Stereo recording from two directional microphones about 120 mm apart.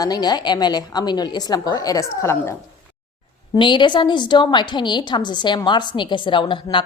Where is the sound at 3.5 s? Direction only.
40° left (ahead or behind).